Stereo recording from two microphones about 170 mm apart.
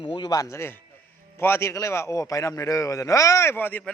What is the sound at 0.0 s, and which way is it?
A man's voice, 25° left (ahead or behind).